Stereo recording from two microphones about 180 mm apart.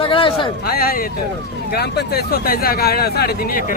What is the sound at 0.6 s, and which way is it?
Speech, 55° left (ahead or behind).